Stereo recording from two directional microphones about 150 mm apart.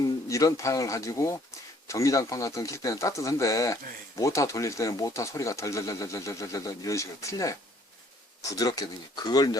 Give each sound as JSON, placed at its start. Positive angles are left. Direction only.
{"t": 0.3, "sound": "speech", "side_deg": 20}